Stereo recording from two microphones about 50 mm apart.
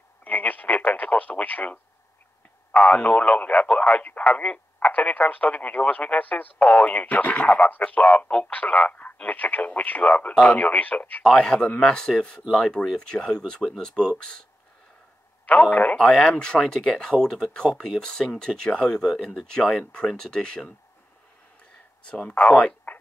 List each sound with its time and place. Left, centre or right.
0.2 s speech: left
11.4 s speech: centre
15.4 s speech: left
16.0 s speech: centre
22.0 s speech: left